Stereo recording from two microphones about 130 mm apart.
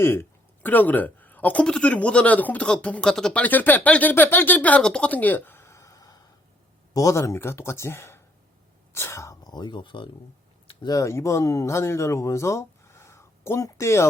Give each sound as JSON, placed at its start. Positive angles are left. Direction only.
{"t": 0.0, "sound": "a woman's voice", "side_deg": 15}
{"t": 10.8, "sound": "speech", "side_deg": 25}